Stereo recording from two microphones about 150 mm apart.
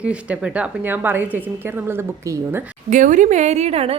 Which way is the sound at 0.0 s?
10° right (ahead or behind).